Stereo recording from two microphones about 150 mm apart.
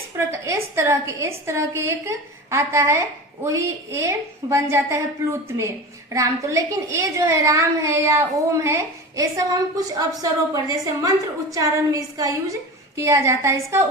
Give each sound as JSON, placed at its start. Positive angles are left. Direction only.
{"t": 0.2, "sound": "a woman's voice", "side_deg": -20}